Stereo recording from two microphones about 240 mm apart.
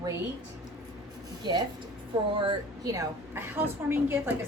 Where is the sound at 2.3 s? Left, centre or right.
Centre.